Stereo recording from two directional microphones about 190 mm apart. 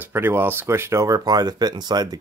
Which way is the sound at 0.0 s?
10° right (ahead or behind).